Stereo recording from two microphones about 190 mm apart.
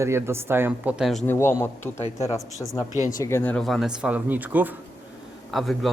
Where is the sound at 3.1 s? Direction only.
15° left (ahead or behind).